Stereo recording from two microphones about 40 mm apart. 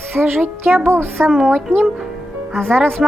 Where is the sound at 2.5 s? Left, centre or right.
Centre.